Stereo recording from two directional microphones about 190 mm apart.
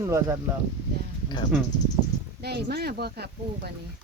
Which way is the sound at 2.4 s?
60° right (ahead or behind).